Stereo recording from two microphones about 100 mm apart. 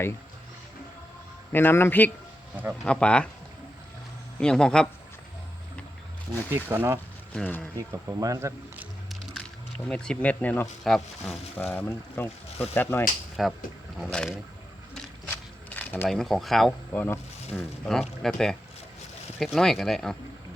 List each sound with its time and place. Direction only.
1.5 s speech: 20° left (ahead or behind)
4.4 s speech: 5° left (ahead or behind)
6.3 s speech: 25° right (ahead or behind)
7.3 s speech: 10° left (ahead or behind)
7.8 s speech: 35° right (ahead or behind)
9.9 s speech: 5° left (ahead or behind)
10.8 s speech: 5° left (ahead or behind)
11.5 s speech: 20° left (ahead or behind)
13.4 s speech: 5° right (ahead or behind)
15.3 s a sound: 20° left (ahead or behind)
16.0 s speech: centre (ahead or behind)
16.9 s speech: 20° left (ahead or behind)
17.5 s speech: 5° left (ahead or behind)